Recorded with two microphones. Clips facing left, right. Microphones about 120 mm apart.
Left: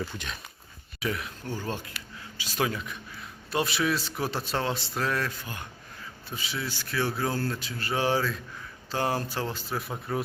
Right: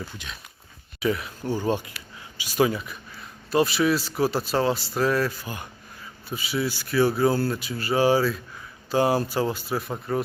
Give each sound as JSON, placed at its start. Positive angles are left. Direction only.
{"t": 0.9, "sound": "speech", "side_deg": 0}
{"t": 1.5, "sound": "a man's voice", "side_deg": -15}